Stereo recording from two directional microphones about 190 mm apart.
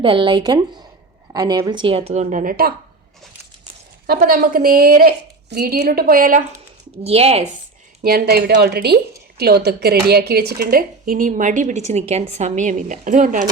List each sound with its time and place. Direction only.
0.0 s a woman's voice: 25° right (ahead or behind); by 2.7 s 50° right (ahead or behind)
4.0 s speech: 50° right (ahead or behind)
7.0 s speech: 30° right (ahead or behind)
8.0 s speech: 55° right (ahead or behind)